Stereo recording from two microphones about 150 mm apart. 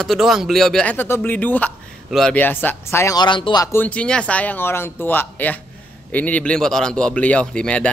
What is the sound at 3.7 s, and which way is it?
A man's voice, 10° left (ahead or behind).